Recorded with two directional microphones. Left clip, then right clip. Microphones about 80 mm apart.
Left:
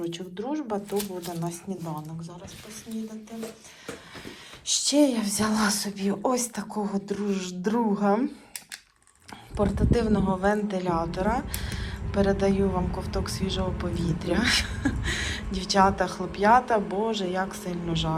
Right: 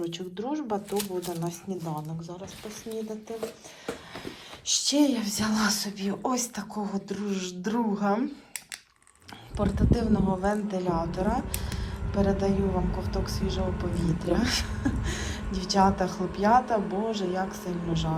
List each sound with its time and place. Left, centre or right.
0.0 s speech: right
4.6 s a woman's voice: right
9.6 s speech: right